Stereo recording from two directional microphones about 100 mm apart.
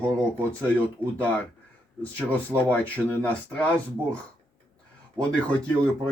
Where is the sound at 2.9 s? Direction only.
15° left (ahead or behind).